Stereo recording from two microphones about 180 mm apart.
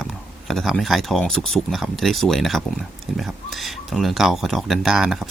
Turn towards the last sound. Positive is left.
turn(degrees=0)  # may be behind; listen again after turning